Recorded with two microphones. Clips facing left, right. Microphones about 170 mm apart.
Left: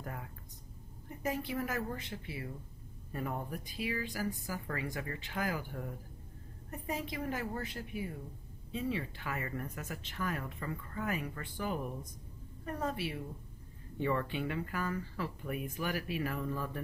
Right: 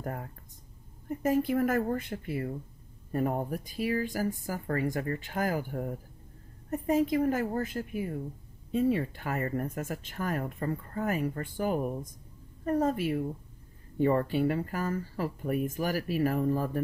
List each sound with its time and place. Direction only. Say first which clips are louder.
0.0 s speech: right 7 dB; 45° right (ahead or behind)